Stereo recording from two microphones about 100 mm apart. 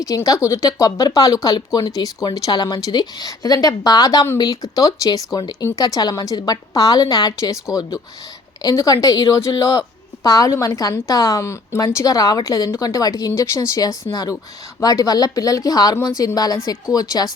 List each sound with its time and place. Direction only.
0.0 s a woman's voice: 35° left (ahead or behind)